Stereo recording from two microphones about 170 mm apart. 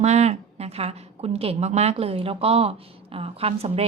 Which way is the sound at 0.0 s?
40° right (ahead or behind).